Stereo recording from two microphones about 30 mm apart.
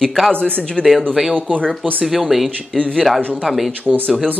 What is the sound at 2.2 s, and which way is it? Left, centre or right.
Speech, centre.